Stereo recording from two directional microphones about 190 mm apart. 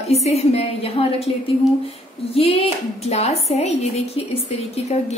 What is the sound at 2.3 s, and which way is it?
Speech, 30° left (ahead or behind).